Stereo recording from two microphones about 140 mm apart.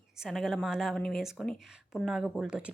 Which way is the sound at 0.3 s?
Centre (ahead or behind).